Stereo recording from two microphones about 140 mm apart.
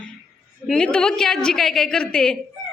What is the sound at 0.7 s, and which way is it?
A woman's voice, 5° left (ahead or behind).